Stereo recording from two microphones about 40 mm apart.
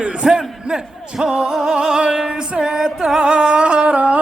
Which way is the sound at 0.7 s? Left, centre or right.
Centre.